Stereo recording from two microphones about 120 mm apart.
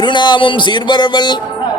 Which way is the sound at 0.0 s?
40° left (ahead or behind).